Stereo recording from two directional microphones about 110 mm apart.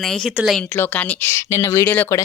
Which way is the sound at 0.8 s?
15° left (ahead or behind).